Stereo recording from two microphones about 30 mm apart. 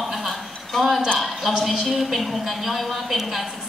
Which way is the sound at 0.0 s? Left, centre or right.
Centre.